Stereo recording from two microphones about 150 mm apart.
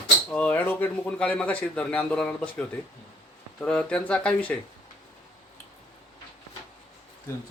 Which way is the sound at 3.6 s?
5° left (ahead or behind).